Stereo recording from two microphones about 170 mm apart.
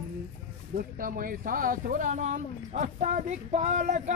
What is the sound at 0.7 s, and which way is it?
Speech, 55° right (ahead or behind).